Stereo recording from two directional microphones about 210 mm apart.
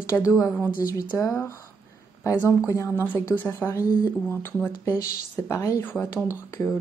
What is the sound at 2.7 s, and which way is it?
Speech, 10° left (ahead or behind).